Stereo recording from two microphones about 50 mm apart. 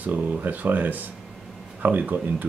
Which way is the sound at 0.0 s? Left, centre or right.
Right.